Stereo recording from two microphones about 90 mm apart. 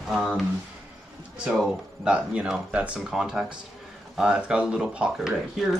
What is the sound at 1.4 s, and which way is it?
Speech, 10° right (ahead or behind).